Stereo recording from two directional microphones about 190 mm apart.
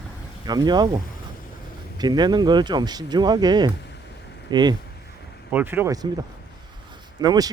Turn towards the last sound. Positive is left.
turn(degrees=-20)  # may be behind; listen again after turning